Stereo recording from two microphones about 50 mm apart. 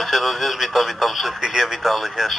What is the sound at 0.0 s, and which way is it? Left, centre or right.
Speech, centre.